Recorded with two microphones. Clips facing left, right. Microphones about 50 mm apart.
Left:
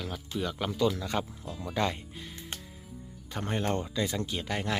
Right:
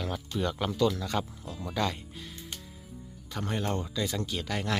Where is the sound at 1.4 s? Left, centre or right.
Centre.